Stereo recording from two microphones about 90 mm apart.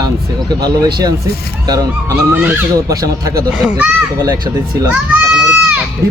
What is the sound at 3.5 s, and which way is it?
Speech, 10° right (ahead or behind).